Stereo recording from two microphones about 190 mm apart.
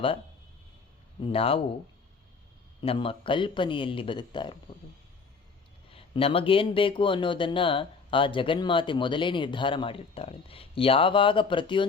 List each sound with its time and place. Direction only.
1.3 s speech: 30° left (ahead or behind)
2.8 s speech: 30° left (ahead or behind)
5.9 s speech: 30° left (ahead or behind)